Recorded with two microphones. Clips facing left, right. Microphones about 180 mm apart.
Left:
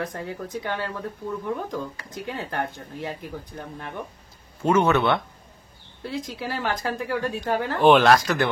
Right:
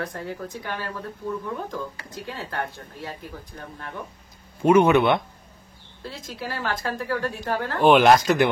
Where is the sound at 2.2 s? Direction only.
20° left (ahead or behind).